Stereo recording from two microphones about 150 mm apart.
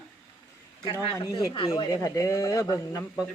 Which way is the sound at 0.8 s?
25° left (ahead or behind).